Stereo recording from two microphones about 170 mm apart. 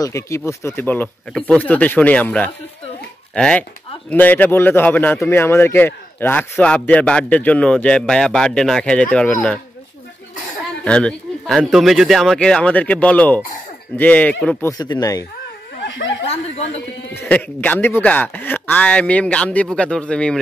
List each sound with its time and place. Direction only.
0.0 s a man's voice: 15° left (ahead or behind)
10.8 s a man's voice: 5° left (ahead or behind)
14.7 s speech: 25° left (ahead or behind)
17.1 s a man's voice: 10° left (ahead or behind)